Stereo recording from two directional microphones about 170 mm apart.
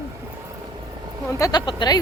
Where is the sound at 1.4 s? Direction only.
20° left (ahead or behind).